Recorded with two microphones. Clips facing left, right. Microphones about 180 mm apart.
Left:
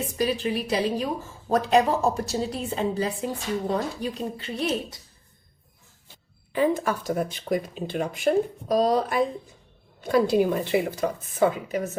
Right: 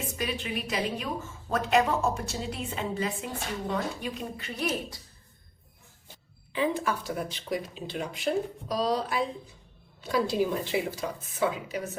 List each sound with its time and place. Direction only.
0.2 s a woman's voice: 35° left (ahead or behind)
6.5 s speech: 45° left (ahead or behind)